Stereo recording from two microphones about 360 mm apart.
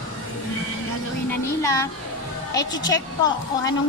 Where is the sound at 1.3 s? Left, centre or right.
Centre.